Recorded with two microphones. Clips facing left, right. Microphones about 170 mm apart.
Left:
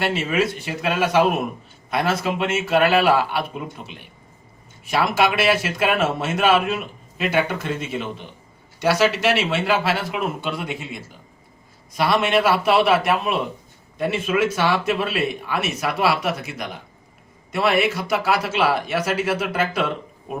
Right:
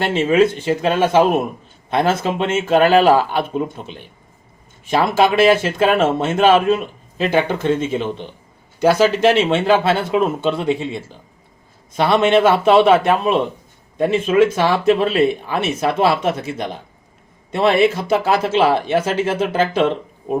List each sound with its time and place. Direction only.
0.0 s speech: 25° right (ahead or behind)